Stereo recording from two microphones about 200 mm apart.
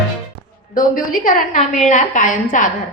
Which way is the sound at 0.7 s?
45° left (ahead or behind).